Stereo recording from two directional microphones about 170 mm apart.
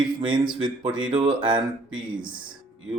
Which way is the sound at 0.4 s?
30° right (ahead or behind).